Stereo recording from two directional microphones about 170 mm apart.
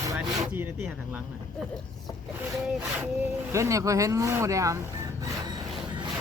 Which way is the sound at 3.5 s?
20° right (ahead or behind).